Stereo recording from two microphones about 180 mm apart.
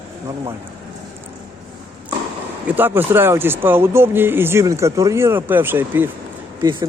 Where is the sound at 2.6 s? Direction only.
10° right (ahead or behind).